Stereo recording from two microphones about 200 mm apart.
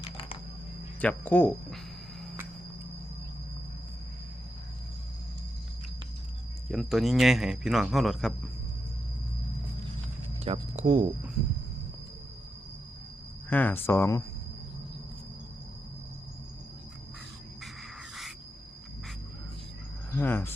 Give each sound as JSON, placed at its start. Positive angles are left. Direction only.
{"t": 1.0, "sound": "speech", "side_deg": 5}
{"t": 6.7, "sound": "speech", "side_deg": 0}
{"t": 10.4, "sound": "speech", "side_deg": -30}
{"t": 13.5, "sound": "speech", "side_deg": 10}
{"t": 18.1, "sound": "a sound", "side_deg": 0}
{"t": 20.1, "sound": "speech", "side_deg": 10}